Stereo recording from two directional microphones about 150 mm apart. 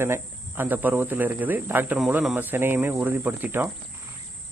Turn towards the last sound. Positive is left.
turn(degrees=-10)  # may be behind; listen again after turning